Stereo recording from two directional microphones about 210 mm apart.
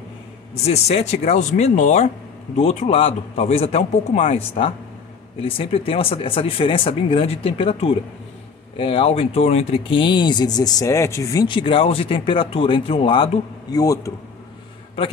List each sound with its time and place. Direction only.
0.6 s speech: 30° left (ahead or behind)